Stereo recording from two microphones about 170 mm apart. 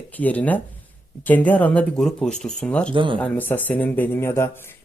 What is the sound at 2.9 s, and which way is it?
Speech, 30° right (ahead or behind).